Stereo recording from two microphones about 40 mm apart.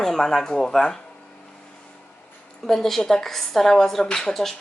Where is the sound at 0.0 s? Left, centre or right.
Centre.